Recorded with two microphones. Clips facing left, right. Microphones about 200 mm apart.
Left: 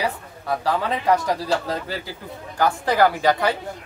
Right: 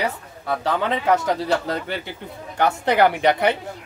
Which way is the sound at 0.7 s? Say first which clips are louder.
Right 1 dB; 25° right (ahead or behind).